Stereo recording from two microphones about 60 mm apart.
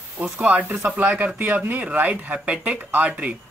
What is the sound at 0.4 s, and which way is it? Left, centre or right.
Speech, right.